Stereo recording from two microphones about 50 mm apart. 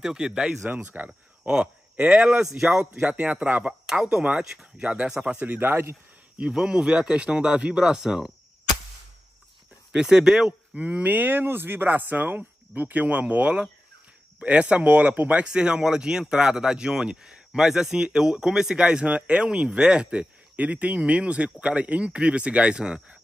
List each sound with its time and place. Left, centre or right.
0.0 s speech: centre
0.7 s speech: right
1.5 s speech: right
3.8 s speech: centre
5.4 s speech: right
6.3 s speech: centre
9.9 s speech: centre
10.7 s speech: right
15.4 s speech: centre